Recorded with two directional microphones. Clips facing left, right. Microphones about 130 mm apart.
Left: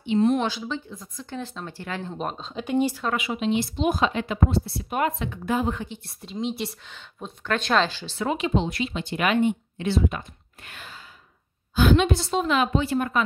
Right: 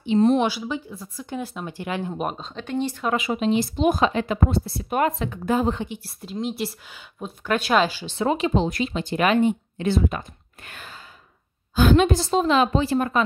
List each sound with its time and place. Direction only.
0.0 s speech: 35° right (ahead or behind)
0.4 s speech: 10° right (ahead or behind)
2.5 s speech: 10° left (ahead or behind)
3.2 s a woman's voice: 40° right (ahead or behind)
6.0 s speech: centre (ahead or behind)
8.3 s speech: 35° right (ahead or behind)